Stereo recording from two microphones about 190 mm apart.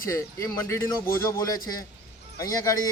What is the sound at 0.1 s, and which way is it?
A man's voice, 15° left (ahead or behind).